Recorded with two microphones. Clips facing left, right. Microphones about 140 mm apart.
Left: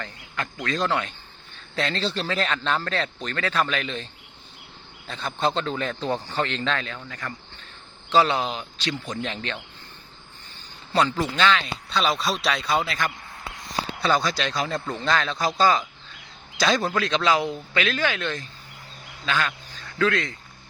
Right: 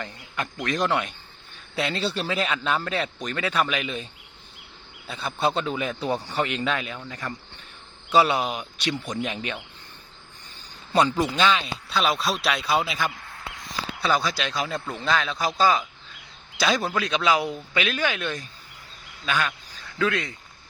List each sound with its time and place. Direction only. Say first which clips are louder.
0.6 s speech: right 1 dB; 20° right (ahead or behind)
10.9 s speech: right 1 dB; 15° right (ahead or behind)